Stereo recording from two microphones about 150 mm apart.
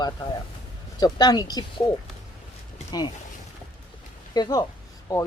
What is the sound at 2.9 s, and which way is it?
Speech, 25° left (ahead or behind).